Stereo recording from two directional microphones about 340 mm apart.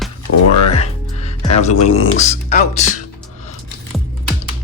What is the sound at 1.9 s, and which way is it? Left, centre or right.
Speech, centre.